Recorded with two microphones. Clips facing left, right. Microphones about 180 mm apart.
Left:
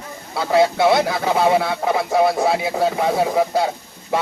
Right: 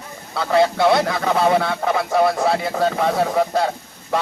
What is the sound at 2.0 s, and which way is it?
Speech, 25° left (ahead or behind).